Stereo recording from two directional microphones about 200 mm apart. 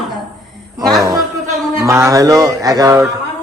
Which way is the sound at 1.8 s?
15° right (ahead or behind).